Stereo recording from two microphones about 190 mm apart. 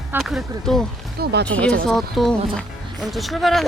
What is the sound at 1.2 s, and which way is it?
Speech, 60° right (ahead or behind).